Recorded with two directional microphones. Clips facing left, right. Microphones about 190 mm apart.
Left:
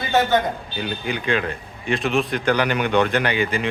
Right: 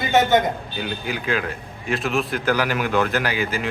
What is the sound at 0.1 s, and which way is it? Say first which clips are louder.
Speech: right 1 dB; 20° right (ahead or behind).